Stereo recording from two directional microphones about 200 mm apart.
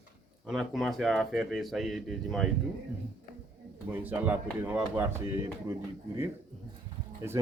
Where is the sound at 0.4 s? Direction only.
Centre (ahead or behind).